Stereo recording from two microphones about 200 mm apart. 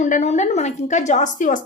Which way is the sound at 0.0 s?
35° left (ahead or behind).